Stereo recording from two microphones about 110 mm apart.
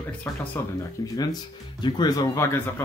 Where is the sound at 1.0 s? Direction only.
35° left (ahead or behind).